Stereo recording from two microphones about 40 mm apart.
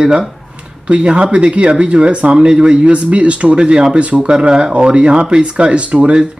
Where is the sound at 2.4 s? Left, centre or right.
Right.